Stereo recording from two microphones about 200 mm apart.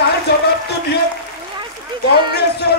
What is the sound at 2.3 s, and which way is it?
Speech, 55° left (ahead or behind).